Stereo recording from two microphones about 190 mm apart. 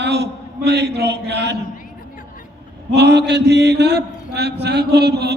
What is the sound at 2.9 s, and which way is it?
Mantra, 60° right (ahead or behind).